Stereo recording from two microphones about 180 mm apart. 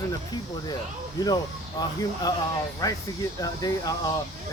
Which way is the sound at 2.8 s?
20° left (ahead or behind).